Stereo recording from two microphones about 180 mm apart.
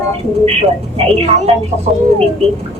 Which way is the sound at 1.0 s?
30° right (ahead or behind).